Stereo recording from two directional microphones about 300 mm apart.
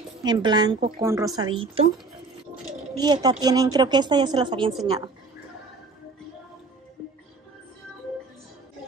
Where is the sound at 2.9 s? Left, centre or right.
Centre.